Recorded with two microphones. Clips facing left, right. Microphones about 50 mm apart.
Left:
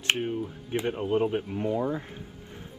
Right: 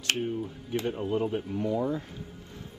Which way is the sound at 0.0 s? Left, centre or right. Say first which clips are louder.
Left 2 dB; left.